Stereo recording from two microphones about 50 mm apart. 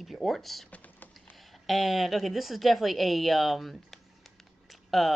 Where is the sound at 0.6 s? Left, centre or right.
Left.